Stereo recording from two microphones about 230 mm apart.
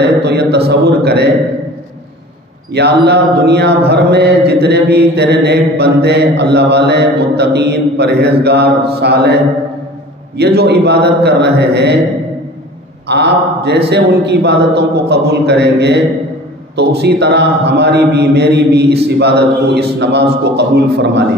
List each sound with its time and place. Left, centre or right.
0.2 s a sound: right
0.7 s a man's voice: right
2.7 s mantra: right
13.1 s mantra: right